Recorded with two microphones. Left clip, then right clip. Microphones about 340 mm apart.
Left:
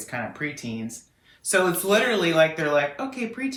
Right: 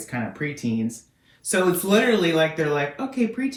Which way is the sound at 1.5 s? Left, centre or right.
Centre.